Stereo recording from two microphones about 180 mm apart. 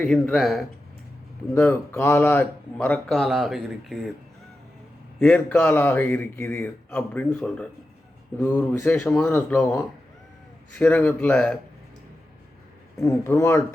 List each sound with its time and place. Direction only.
0.0 s speech: 5° left (ahead or behind)
1.5 s speech: 15° left (ahead or behind)
5.2 s speech: 5° left (ahead or behind)
13.0 s speech: 15° left (ahead or behind)